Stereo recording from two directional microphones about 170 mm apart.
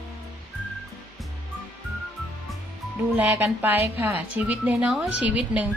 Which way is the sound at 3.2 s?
10° right (ahead or behind).